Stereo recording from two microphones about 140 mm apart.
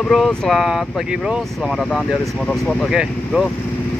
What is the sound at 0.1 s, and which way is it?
Speech, centre (ahead or behind).